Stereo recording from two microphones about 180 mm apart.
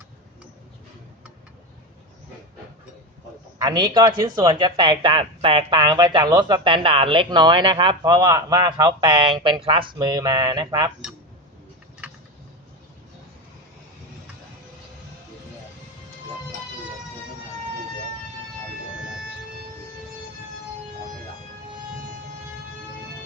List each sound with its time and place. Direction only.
3.6 s speech: 20° right (ahead or behind)